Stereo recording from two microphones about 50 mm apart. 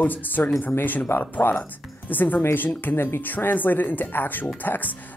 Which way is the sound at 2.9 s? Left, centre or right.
Left.